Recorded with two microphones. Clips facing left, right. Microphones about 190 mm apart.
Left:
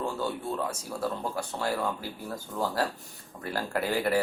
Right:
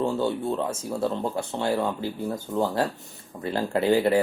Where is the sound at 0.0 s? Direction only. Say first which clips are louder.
Right 7 dB; 25° right (ahead or behind).